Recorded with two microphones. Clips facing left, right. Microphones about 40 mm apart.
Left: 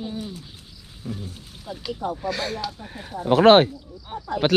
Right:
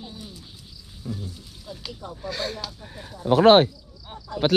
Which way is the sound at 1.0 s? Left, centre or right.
Left.